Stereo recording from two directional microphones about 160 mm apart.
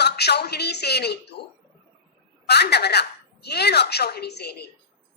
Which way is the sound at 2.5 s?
90° left.